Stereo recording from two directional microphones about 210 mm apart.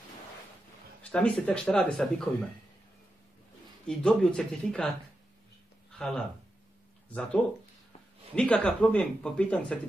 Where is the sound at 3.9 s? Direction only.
5° left (ahead or behind).